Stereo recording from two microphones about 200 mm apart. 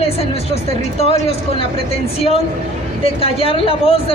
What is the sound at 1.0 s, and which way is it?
A man's voice, 30° left (ahead or behind).